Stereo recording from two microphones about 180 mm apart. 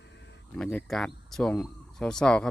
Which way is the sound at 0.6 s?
5° left (ahead or behind).